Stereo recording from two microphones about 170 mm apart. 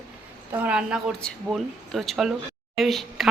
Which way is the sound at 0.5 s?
10° right (ahead or behind).